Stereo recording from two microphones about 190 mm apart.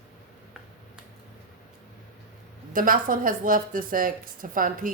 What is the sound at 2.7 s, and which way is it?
A woman's voice, 45° right (ahead or behind).